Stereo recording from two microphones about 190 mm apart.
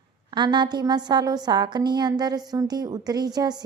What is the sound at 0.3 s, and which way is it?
A woman's voice, 25° right (ahead or behind).